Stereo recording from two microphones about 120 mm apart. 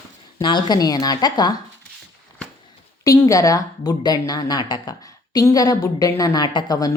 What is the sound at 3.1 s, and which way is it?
A woman's voice, 25° left (ahead or behind).